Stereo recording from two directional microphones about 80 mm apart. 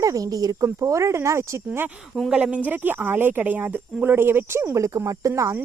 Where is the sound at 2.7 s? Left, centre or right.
Right.